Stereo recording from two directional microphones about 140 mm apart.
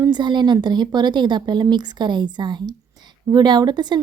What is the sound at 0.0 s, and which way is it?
A woman's voice, 30° right (ahead or behind).